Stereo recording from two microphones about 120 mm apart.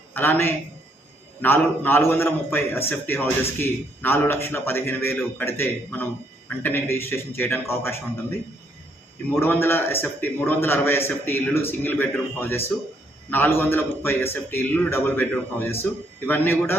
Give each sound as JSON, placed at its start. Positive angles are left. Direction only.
{"t": 0.1, "sound": "a man's voice", "side_deg": 15}